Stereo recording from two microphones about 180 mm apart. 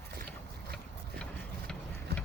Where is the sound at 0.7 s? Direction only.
5° left (ahead or behind).